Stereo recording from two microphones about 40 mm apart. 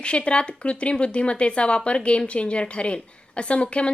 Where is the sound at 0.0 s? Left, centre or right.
Left.